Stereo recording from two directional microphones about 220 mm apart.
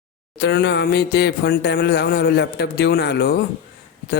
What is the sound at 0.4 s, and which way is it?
A man's voice, 50° left (ahead or behind).